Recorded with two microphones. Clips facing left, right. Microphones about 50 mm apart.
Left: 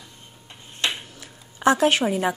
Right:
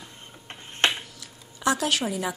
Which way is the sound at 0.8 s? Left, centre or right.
Right.